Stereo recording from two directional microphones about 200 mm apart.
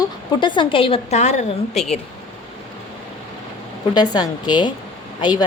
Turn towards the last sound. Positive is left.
turn(degrees=20)  # may be behind; listen again after turning